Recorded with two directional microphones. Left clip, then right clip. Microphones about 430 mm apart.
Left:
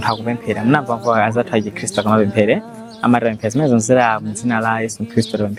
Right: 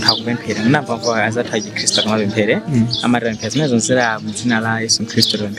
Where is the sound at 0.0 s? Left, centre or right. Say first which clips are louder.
Right 3 dB; centre.